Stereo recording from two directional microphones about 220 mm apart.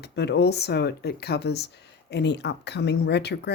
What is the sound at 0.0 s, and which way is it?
Speech, 50° left (ahead or behind).